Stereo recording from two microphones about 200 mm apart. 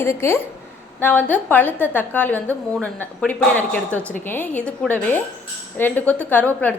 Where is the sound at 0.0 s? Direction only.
15° left (ahead or behind).